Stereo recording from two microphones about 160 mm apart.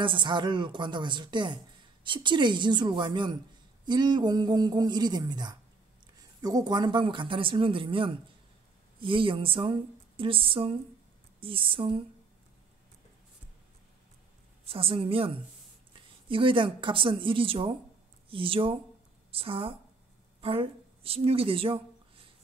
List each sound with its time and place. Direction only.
0.0 s a man's voice: 30° right (ahead or behind)
14.7 s a man's voice: 35° right (ahead or behind)